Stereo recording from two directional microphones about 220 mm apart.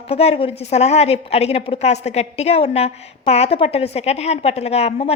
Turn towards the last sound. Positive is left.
turn(degrees=30)  # may be behind; listen again after turning